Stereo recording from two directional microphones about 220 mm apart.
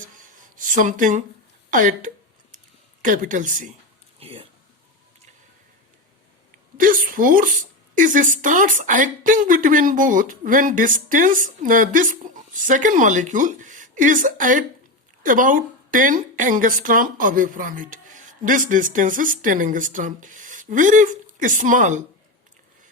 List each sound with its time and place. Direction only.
0.5 s speech: 35° right (ahead or behind)
1.7 s a sound: 35° right (ahead or behind)
3.0 s a woman's voice: 40° right (ahead or behind)
4.2 s speech: 25° right (ahead or behind)
6.7 s a woman's voice: 40° right (ahead or behind)